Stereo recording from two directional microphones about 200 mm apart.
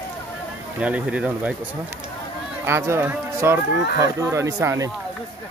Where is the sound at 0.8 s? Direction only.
5° right (ahead or behind).